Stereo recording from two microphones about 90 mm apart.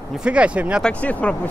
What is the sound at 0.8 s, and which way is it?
Speech, 15° left (ahead or behind).